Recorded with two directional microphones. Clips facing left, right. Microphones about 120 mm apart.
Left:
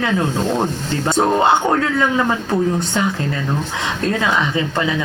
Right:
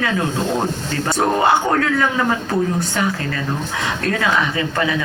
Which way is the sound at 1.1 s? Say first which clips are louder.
Left 2 dB; 25° left (ahead or behind).